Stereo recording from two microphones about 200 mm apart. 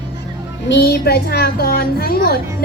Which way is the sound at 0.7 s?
50° left (ahead or behind).